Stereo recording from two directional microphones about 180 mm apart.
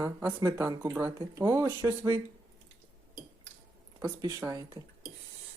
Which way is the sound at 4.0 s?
20° right (ahead or behind).